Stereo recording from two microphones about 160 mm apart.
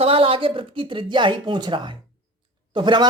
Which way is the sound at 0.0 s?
35° right (ahead or behind).